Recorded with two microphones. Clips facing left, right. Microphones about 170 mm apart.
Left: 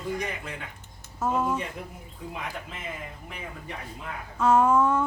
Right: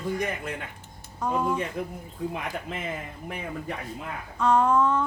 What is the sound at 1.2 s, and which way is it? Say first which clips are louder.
Speech: even; 5° left (ahead or behind).